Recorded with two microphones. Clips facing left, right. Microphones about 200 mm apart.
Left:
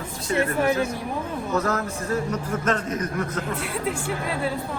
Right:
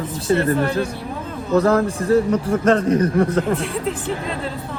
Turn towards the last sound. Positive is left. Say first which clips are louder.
# right 2 dB
turn(degrees=10)  # may be behind; listen again after turning